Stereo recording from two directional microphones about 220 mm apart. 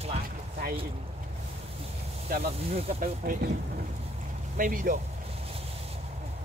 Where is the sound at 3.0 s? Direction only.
40° right (ahead or behind).